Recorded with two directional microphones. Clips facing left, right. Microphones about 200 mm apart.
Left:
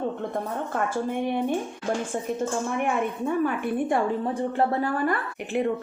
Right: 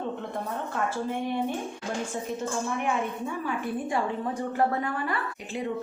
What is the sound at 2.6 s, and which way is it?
A woman's voice, 55° left (ahead or behind).